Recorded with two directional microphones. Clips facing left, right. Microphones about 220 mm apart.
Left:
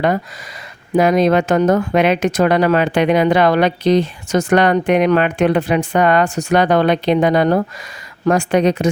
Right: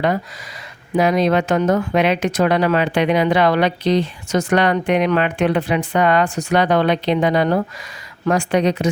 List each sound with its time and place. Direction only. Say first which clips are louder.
0.9 s speech: left 3 dB; 50° left (ahead or behind)